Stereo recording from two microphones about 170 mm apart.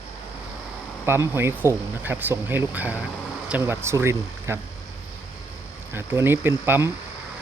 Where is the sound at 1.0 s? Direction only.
15° right (ahead or behind).